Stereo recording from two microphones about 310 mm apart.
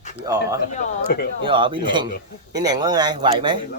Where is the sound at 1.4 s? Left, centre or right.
Centre.